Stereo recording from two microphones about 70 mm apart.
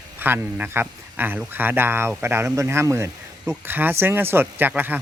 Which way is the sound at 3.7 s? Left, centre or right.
Right.